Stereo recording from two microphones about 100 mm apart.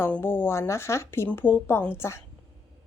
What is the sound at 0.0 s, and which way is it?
Speech, 20° left (ahead or behind).